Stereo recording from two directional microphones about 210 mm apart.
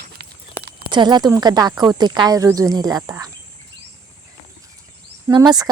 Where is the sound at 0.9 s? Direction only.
20° right (ahead or behind).